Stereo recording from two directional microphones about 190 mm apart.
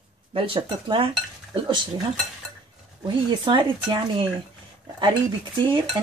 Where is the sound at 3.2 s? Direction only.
25° right (ahead or behind).